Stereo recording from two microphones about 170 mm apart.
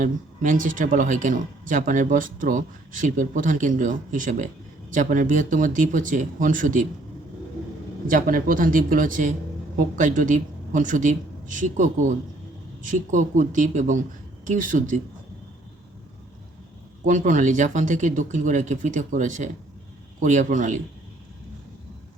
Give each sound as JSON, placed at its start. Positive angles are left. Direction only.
{"t": 0.0, "sound": "speech", "side_deg": -50}
{"t": 8.0, "sound": "speech", "side_deg": -55}
{"t": 17.1, "sound": "speech", "side_deg": -50}